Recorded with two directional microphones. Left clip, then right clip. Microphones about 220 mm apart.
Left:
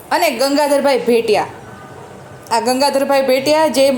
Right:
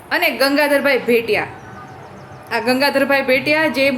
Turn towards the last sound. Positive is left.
turn(degrees=10)  # may be behind; listen again after turning